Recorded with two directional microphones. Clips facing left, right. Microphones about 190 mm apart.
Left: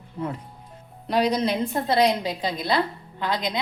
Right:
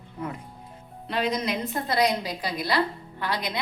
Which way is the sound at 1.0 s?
40° left (ahead or behind).